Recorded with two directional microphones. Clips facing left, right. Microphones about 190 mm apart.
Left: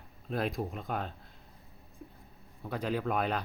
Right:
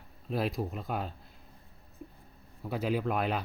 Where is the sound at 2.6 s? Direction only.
5° right (ahead or behind).